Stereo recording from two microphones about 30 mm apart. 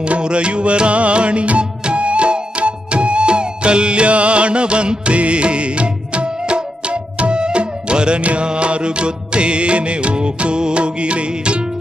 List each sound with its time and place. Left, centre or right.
0.0 s music: right